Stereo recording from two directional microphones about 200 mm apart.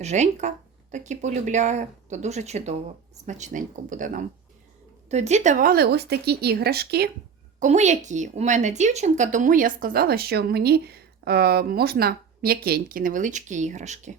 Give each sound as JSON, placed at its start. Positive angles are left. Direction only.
{"t": 0.0, "sound": "a woman's voice", "side_deg": -35}
{"t": 7.6, "sound": "a woman's voice", "side_deg": -35}